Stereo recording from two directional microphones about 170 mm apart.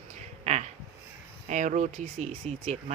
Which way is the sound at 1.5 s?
45° right (ahead or behind).